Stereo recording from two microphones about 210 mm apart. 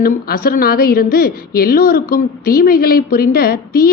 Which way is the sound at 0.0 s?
45° left (ahead or behind).